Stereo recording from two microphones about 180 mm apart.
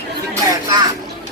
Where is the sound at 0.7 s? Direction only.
25° right (ahead or behind).